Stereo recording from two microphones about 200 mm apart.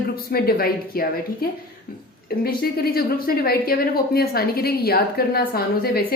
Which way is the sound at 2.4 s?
50° left (ahead or behind).